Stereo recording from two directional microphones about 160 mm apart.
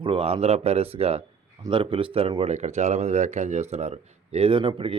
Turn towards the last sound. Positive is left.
turn(degrees=-35)  # may be behind; listen again after turning